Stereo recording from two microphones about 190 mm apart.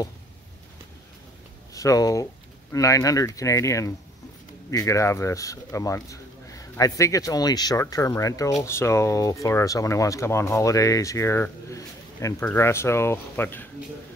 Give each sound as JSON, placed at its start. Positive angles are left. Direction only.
{"t": 1.7, "sound": "speech", "side_deg": 15}